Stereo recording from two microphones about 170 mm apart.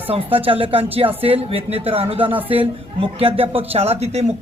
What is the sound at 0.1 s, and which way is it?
Speech, 35° right (ahead or behind).